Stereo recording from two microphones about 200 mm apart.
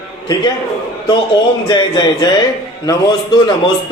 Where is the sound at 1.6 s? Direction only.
20° left (ahead or behind).